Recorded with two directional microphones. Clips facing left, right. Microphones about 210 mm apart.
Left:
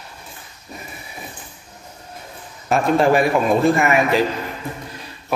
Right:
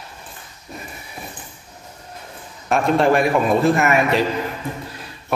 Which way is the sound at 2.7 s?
Centre (ahead or behind).